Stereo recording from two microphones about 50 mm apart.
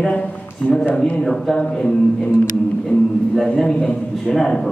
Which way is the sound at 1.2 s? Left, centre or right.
Centre.